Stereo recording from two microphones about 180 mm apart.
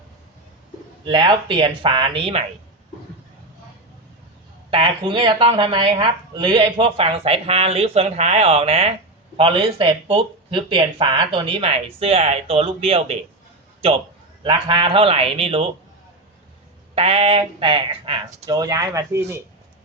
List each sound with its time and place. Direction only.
1.0 s speech: 25° right (ahead or behind)
4.7 s speech: 30° right (ahead or behind)
14.4 s speech: 30° right (ahead or behind)
16.9 s speech: 35° right (ahead or behind); by 19.4 s 15° right (ahead or behind)